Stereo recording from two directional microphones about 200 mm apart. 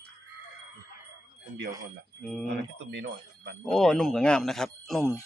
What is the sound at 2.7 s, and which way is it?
Speech, 65° right (ahead or behind).